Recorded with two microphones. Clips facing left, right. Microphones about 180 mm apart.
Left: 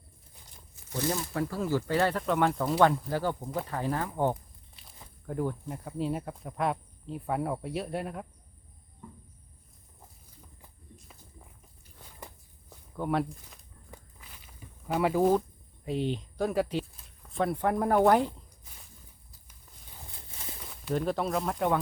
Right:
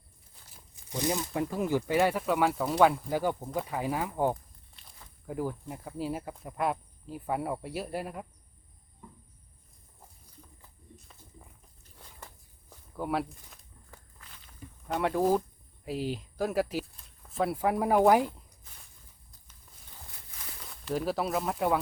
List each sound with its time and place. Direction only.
0.9 s speech: 15° right (ahead or behind)
13.0 s speech: 5° right (ahead or behind)
13.9 s walk: 15° left (ahead or behind)
14.8 s speech: 5° left (ahead or behind)
20.7 s speech: centre (ahead or behind)